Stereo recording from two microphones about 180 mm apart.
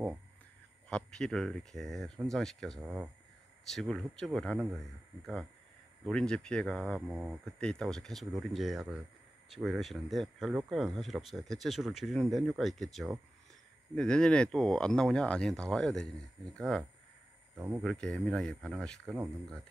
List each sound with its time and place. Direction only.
0.8 s speech: 5° left (ahead or behind)
2.8 s speech: 10° right (ahead or behind)
3.7 s speech: centre (ahead or behind)
7.0 s speech: 10° right (ahead or behind)
7.4 s speech: 5° left (ahead or behind)
17.6 s speech: 15° right (ahead or behind)
17.8 s speech: 5° left (ahead or behind)